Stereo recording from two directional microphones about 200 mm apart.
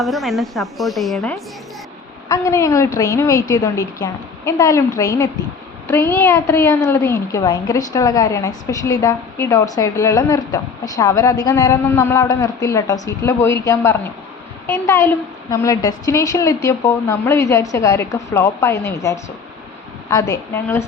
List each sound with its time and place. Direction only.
0.0 s a woman's voice: centre (ahead or behind)
2.3 s a woman's voice: 15° left (ahead or behind)